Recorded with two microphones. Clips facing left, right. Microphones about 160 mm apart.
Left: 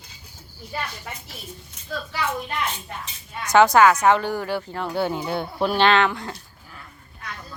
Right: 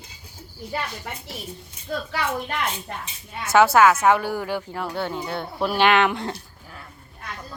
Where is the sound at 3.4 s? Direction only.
5° right (ahead or behind).